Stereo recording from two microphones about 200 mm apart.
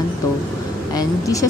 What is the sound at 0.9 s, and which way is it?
Speech, 15° left (ahead or behind).